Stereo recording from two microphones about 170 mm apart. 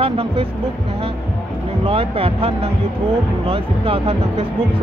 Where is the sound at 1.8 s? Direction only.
35° right (ahead or behind).